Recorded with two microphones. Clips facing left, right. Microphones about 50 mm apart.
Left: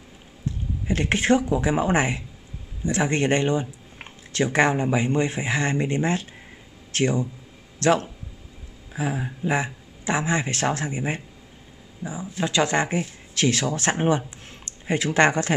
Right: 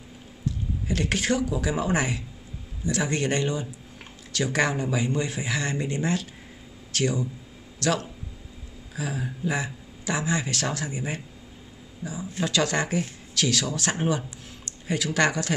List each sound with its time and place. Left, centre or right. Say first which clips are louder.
0.5 s a man's voice: left 2 dB; left